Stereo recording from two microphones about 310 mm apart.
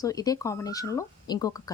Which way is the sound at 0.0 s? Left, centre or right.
Centre.